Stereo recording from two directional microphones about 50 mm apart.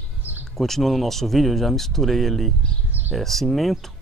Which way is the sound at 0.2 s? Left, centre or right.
Right.